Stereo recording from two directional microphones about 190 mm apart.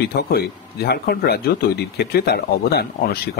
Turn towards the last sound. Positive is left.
turn(degrees=55)  # may be behind; listen again after turning